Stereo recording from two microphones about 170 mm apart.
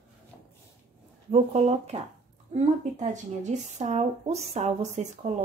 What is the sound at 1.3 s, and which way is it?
A woman's voice, 40° right (ahead or behind).